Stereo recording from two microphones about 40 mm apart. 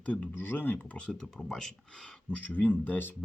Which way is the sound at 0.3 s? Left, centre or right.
Left.